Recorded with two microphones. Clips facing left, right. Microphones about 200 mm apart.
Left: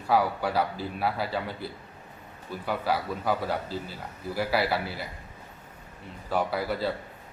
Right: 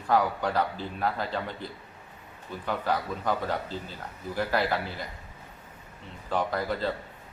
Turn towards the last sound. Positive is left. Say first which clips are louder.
# left 1 dB
turn(degrees=10)  # may be behind; listen again after turning